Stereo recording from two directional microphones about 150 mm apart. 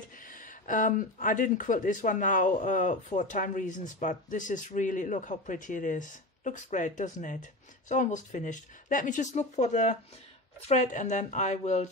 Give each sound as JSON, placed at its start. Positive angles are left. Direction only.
{"t": 0.3, "sound": "speech", "side_deg": 60}